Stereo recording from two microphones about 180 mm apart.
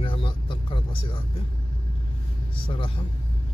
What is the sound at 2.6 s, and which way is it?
Speech, 30° left (ahead or behind).